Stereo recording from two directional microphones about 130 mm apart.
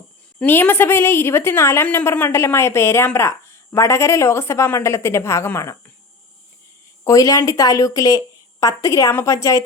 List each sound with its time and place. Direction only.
0.3 s a woman's voice: 15° left (ahead or behind)
7.0 s a woman's voice: 25° left (ahead or behind)